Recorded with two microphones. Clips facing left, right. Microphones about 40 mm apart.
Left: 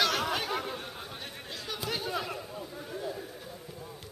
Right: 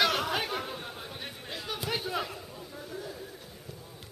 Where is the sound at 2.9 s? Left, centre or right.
Centre.